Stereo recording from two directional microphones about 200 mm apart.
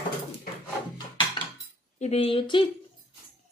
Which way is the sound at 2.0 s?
30° left (ahead or behind).